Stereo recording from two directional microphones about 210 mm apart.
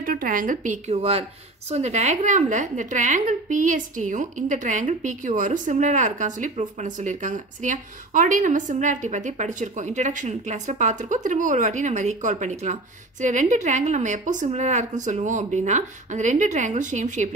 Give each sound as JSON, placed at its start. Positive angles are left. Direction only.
{"t": 0.0, "sound": "a woman's voice", "side_deg": -40}